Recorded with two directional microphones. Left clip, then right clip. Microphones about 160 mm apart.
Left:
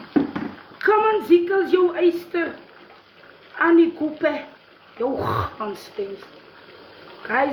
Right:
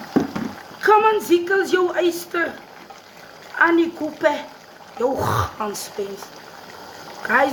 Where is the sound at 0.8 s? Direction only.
10° right (ahead or behind).